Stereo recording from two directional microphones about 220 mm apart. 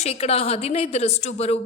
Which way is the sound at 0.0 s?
30° left (ahead or behind).